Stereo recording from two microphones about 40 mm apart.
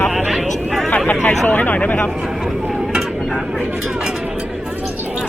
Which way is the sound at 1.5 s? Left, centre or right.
Left.